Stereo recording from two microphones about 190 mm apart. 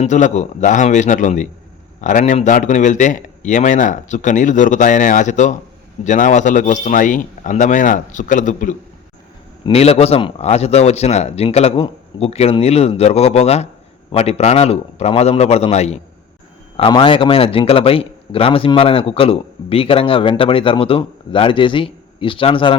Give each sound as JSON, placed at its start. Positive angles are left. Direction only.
{"t": 0.0, "sound": "a man's voice", "side_deg": 40}